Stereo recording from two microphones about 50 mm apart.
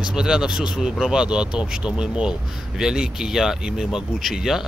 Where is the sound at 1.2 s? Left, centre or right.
Centre.